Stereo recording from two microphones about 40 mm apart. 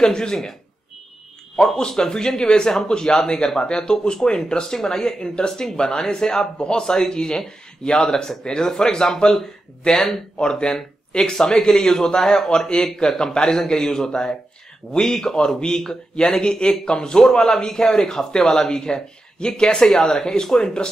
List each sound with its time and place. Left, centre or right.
0.0 s speech: centre
1.6 s a man's voice: centre
10.4 s a man's voice: left